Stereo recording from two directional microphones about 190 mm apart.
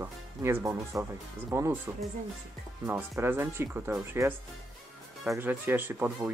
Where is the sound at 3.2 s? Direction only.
15° right (ahead or behind).